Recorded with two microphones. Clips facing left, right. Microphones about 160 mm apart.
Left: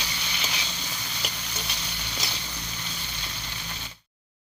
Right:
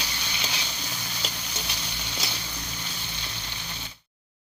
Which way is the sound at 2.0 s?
5° right (ahead or behind).